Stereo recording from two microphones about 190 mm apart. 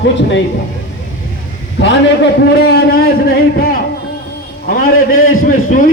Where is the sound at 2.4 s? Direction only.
60° left (ahead or behind); by 5.8 s 45° left (ahead or behind).